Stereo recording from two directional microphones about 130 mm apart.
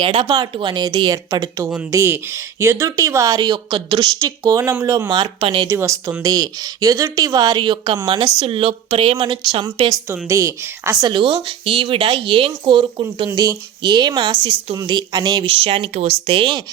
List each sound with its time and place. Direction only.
0.0 s speech: 45° right (ahead or behind)
0.3 s speech: 30° right (ahead or behind)
5.1 s speech: 40° right (ahead or behind)
5.6 s speech: 20° right (ahead or behind)
8.4 s speech: 45° right (ahead or behind)
10.2 s speech: 25° right (ahead or behind)
11.1 s speech: 40° right (ahead or behind)
15.4 s speech: 45° right (ahead or behind)